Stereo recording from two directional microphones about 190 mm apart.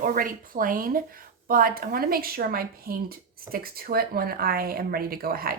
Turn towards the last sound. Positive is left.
turn(degrees=-50)  # may be behind; listen again after turning